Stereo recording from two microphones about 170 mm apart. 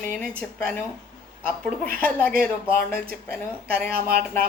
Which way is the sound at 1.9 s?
10° left (ahead or behind).